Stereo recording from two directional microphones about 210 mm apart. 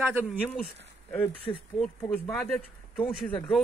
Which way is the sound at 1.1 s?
10° left (ahead or behind).